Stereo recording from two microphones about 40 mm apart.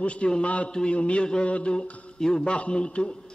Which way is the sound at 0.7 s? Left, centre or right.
Centre.